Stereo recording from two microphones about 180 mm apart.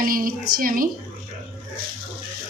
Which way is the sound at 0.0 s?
50° right (ahead or behind).